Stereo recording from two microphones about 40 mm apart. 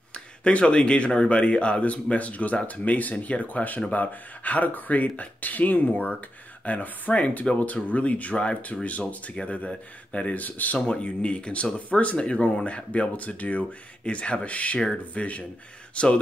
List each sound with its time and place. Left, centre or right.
0.1 s speech: left
10.9 s speech: left
13.1 s speech: left
14.0 s speech: left